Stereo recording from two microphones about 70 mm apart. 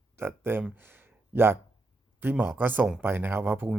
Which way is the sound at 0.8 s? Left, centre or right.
Right.